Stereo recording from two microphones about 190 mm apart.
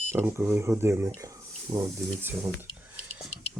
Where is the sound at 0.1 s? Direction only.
10° right (ahead or behind).